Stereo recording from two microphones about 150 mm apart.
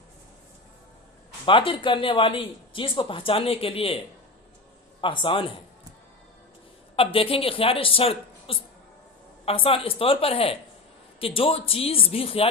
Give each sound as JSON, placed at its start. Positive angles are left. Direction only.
{"t": 1.5, "sound": "speech", "side_deg": 35}
{"t": 6.9, "sound": "speech", "side_deg": 40}